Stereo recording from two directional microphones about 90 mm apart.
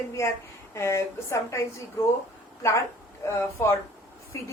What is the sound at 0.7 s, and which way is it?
A woman's voice, 35° left (ahead or behind).